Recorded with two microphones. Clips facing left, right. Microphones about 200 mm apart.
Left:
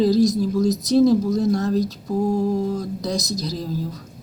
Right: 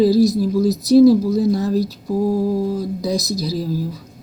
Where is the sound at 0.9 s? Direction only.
5° right (ahead or behind).